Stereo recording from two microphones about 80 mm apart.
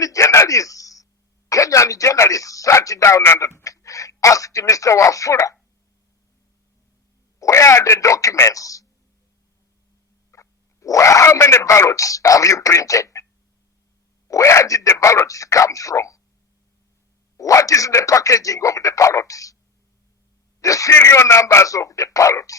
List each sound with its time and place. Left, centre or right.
0.0 s a sound: left
1.5 s speech: left
7.3 s speech: left
10.3 s speech: left
14.3 s speech: left
17.3 s speech: left
20.6 s a man's voice: left
20.9 s speech: left